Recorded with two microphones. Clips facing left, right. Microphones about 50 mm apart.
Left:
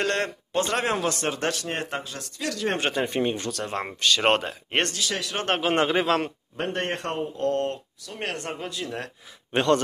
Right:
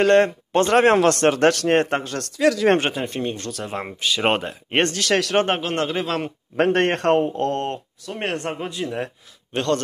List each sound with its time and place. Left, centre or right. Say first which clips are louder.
0.0 s speech: right 10 dB; right
2.9 s speech: left 1 dB; centre
3.2 s speech: left 1 dB; centre
3.5 s speech: right 1 dB; centre
4.9 s speech: right 8 dB; right
5.6 s speech: left 1 dB; centre
6.0 s speech: left 1 dB; centre
6.5 s speech: right 12 dB; right
6.9 s speech: right 10 dB; right
7.4 s a man's voice: right 1 dB; right
9.5 s speech: left 1 dB; left